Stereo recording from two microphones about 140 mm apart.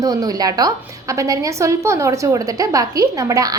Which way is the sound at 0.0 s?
25° right (ahead or behind).